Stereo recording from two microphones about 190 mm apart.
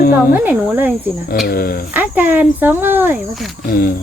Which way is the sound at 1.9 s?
10° right (ahead or behind).